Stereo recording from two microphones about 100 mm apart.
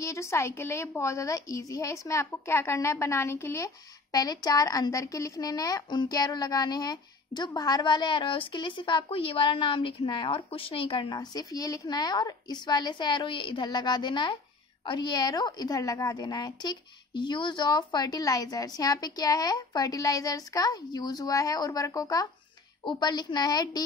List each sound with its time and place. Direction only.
0.0 s a woman's voice: 30° left (ahead or behind)
4.1 s a woman's voice: 40° left (ahead or behind); by 11.1 s 60° left (ahead or behind)
11.1 s a woman's voice: 35° left (ahead or behind)